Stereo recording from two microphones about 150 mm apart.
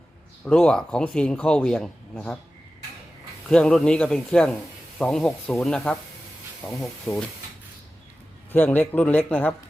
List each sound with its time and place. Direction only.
0.4 s speech: 5° left (ahead or behind)
3.5 s a man's voice: 5° left (ahead or behind)
8.5 s speech: 10° left (ahead or behind)